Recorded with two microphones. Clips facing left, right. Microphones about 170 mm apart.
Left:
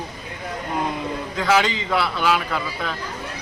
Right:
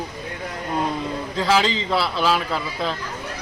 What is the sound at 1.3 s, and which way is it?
Speech, 30° right (ahead or behind).